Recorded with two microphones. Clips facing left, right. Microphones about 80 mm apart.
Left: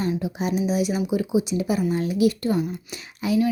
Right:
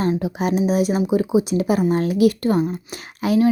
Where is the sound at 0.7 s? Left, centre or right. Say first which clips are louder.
Right 5 dB; right.